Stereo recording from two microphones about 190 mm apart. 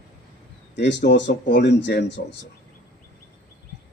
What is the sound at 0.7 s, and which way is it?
Speech, 65° left (ahead or behind).